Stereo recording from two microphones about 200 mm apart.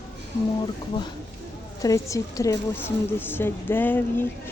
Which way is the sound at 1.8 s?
15° left (ahead or behind).